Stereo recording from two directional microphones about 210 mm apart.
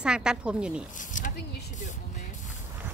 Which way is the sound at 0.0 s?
5° right (ahead or behind).